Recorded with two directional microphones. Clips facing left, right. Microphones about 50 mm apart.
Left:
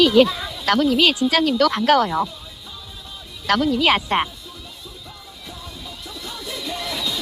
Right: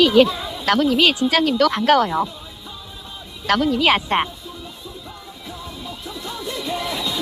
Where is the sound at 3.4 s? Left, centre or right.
Right.